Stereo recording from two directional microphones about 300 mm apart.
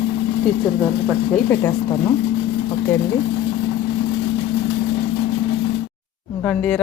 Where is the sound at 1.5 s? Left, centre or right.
Centre.